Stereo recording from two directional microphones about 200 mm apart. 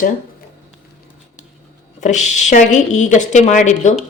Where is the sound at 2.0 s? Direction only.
35° left (ahead or behind).